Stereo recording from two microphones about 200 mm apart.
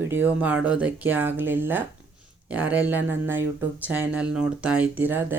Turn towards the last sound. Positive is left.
turn(degrees=-10)  # may be behind; listen again after turning